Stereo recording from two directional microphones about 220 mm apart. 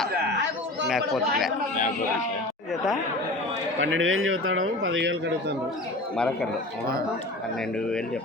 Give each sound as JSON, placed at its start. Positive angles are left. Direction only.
{"t": 0.9, "sound": "speech", "side_deg": 0}
{"t": 3.8, "sound": "speech", "side_deg": -60}
{"t": 6.1, "sound": "speech", "side_deg": 5}